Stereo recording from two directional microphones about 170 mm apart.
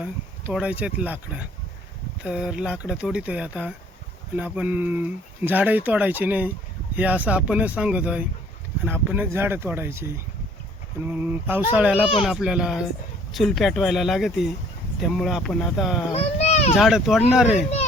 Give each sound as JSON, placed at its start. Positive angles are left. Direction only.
{"t": 0.0, "sound": "speech", "side_deg": -5}
{"t": 16.1, "sound": "a sound", "side_deg": 40}
{"t": 16.7, "sound": "speech", "side_deg": 0}